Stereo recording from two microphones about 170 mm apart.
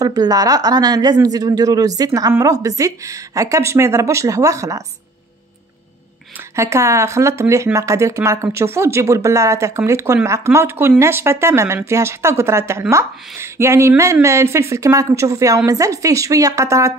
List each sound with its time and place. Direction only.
0.0 s a woman's voice: 20° right (ahead or behind)
6.5 s a woman's voice: 15° right (ahead or behind)